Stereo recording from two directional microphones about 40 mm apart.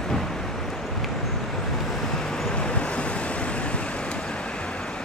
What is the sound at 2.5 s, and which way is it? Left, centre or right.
Vehicle, left.